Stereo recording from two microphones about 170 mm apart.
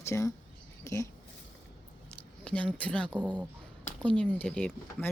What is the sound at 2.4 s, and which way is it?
Speech, 5° left (ahead or behind).